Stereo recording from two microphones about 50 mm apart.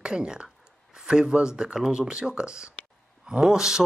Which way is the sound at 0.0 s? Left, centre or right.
Centre.